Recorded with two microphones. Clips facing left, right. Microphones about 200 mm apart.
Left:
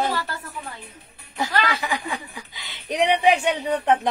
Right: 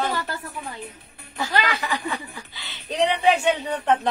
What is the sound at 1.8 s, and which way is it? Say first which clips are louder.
Speech: even; 15° left (ahead or behind).